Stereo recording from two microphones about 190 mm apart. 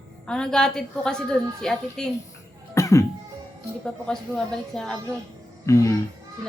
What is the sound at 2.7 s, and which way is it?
Cough, 15° left (ahead or behind).